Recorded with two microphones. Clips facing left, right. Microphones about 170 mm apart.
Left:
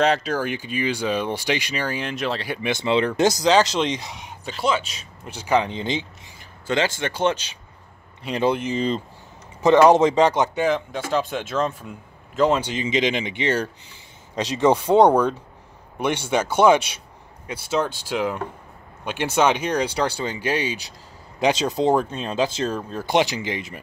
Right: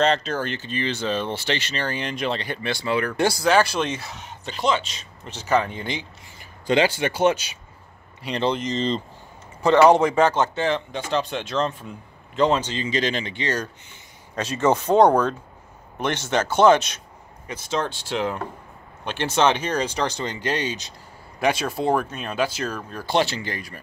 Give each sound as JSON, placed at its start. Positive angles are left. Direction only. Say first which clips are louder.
{"t": 0.0, "sound": "speech", "louder": "left 1 dB", "side_deg": 10}
{"t": 2.7, "sound": "speech", "louder": "left 4 dB", "side_deg": 20}
{"t": 6.7, "sound": "speech", "louder": "right 3 dB", "side_deg": -10}
{"t": 8.2, "sound": "speech", "louder": "left 2 dB", "side_deg": 5}